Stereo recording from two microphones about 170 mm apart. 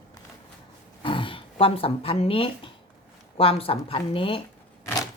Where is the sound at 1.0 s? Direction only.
30° left (ahead or behind).